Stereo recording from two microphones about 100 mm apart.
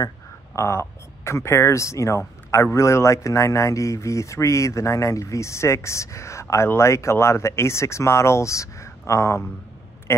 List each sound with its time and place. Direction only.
0.6 s speech: 25° left (ahead or behind)